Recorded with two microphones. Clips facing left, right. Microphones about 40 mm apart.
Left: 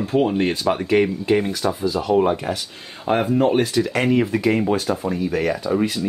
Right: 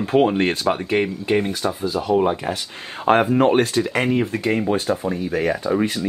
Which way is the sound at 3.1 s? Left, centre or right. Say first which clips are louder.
Right 2 dB; right.